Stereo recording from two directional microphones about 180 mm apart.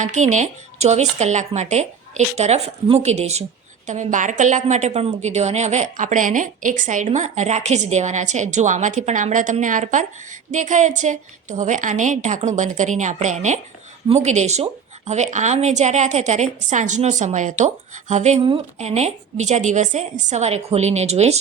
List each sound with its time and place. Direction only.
0.0 s a woman's voice: 40° right (ahead or behind)